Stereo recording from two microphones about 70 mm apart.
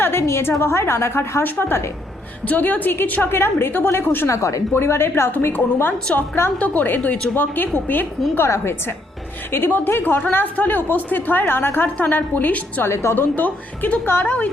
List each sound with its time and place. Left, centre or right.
0.0 s a woman's voice: left
4.3 s a woman's voice: left
4.7 s a woman's voice: left
6.6 s a woman's voice: left
8.4 s a woman's voice: left
12.9 s a woman's voice: left
13.3 s a woman's voice: left